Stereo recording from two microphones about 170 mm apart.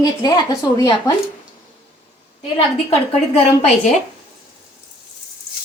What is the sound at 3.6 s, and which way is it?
Speech, 40° left (ahead or behind).